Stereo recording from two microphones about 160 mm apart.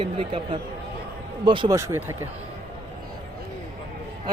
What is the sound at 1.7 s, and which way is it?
Speech, 15° right (ahead or behind).